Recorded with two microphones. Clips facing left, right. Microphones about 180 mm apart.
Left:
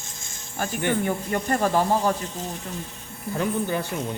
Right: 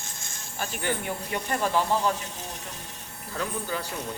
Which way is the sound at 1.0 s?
45° left (ahead or behind).